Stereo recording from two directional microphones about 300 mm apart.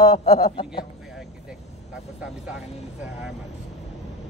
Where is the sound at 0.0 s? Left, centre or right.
Centre.